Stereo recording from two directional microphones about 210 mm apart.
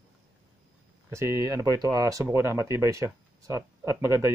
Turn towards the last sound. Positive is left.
turn(degrees=-15)  # may be behind; listen again after turning